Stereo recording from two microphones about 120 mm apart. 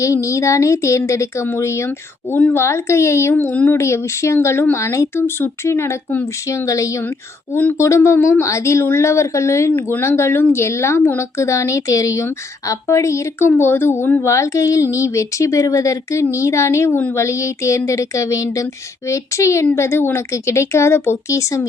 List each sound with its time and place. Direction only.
0.0 s speech: 25° left (ahead or behind)